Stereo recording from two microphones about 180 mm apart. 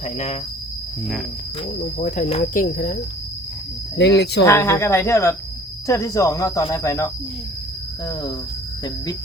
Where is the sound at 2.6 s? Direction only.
50° left (ahead or behind).